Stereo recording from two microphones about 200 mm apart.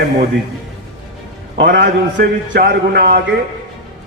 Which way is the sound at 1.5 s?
60° right (ahead or behind).